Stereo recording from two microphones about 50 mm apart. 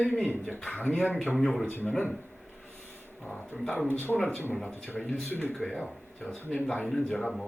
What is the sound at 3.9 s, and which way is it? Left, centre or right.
Speech, left.